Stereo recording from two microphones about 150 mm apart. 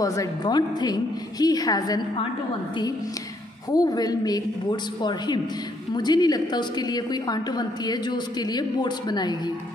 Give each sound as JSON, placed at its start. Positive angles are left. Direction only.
{"t": 0.0, "sound": "a woman's voice", "side_deg": 20}
{"t": 3.7, "sound": "a woman's voice", "side_deg": 25}